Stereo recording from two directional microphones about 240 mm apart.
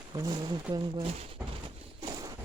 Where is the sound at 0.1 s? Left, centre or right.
Centre.